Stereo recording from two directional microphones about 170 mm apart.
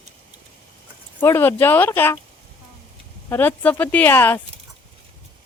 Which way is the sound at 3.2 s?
10° left (ahead or behind).